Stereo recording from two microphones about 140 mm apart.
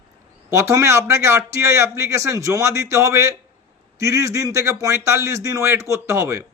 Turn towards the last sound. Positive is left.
turn(degrees=-20)  # may be behind; listen again after turning